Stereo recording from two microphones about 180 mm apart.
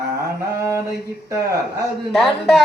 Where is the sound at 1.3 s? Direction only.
15° right (ahead or behind).